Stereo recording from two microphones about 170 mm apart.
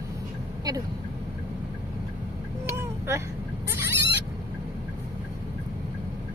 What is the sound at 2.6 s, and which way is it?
Vehicle, 15° right (ahead or behind).